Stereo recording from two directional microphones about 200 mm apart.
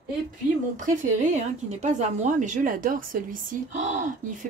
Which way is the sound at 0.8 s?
35° right (ahead or behind).